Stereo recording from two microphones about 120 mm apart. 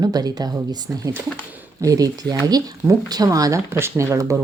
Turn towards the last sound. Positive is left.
turn(degrees=-25)  # may be behind; listen again after turning